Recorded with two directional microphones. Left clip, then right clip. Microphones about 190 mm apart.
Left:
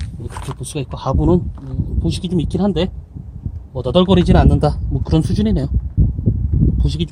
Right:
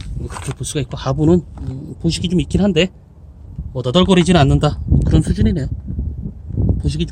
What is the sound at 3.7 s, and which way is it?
Speech, 80° right.